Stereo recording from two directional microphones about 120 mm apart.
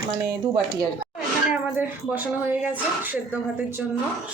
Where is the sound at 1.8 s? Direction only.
15° right (ahead or behind).